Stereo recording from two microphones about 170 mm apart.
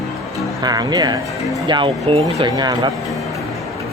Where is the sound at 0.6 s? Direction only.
25° right (ahead or behind).